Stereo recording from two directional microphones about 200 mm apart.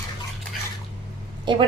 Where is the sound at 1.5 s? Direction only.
20° right (ahead or behind).